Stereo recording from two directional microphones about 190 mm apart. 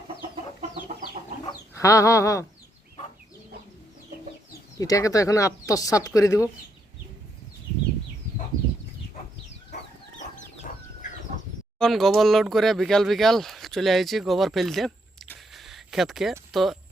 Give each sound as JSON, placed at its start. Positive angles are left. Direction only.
{"t": 0.2, "sound": "chicken", "side_deg": -30}
{"t": 1.5, "sound": "speech", "side_deg": 15}
{"t": 4.8, "sound": "speech", "side_deg": 20}
{"t": 11.8, "sound": "speech", "side_deg": 0}
{"t": 15.5, "sound": "a sound", "side_deg": 0}
{"t": 16.5, "sound": "speech", "side_deg": 0}